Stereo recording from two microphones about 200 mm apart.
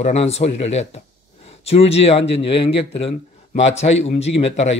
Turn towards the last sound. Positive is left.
turn(degrees=30)  # may be behind; listen again after turning